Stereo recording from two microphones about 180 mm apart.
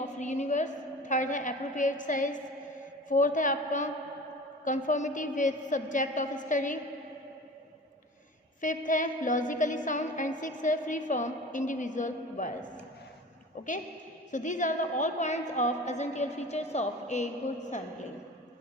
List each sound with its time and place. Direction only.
0.0 s a sound: 40° left (ahead or behind)
2.0 s a woman's voice: 45° left (ahead or behind)
8.6 s a woman's voice: 45° left (ahead or behind)
13.6 s a woman's voice: 50° left (ahead or behind)